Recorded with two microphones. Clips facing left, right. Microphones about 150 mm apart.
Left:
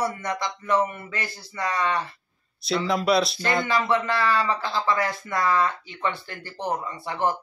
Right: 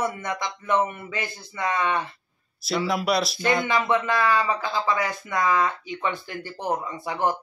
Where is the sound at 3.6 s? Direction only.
20° right (ahead or behind).